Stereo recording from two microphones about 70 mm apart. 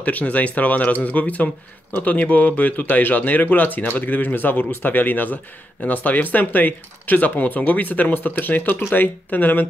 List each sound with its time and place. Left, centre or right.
0.0 s speech: left